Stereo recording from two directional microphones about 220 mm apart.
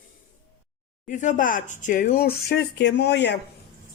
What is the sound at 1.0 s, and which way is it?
A woman's voice, 35° left (ahead or behind).